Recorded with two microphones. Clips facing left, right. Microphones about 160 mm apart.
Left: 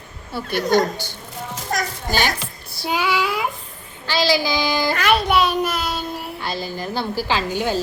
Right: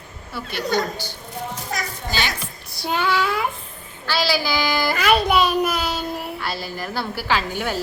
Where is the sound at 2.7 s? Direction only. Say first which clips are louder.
Even; 5° left (ahead or behind).